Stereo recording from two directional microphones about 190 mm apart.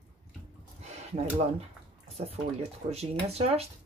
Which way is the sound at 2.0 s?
35° right (ahead or behind).